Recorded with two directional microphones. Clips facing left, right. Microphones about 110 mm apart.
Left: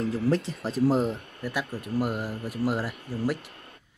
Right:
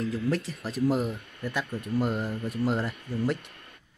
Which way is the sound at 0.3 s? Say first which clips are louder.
Left 3 dB; 30° left (ahead or behind).